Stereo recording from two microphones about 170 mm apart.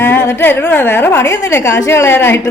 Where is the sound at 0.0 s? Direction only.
15° left (ahead or behind).